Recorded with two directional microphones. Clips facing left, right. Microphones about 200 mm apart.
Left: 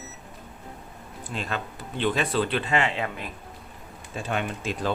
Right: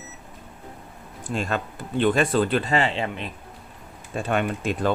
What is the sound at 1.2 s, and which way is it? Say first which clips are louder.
Speech: right 5 dB; 45° right (ahead or behind).